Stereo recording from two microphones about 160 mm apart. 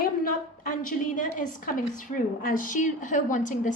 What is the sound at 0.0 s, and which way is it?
A woman's voice, 60° left (ahead or behind).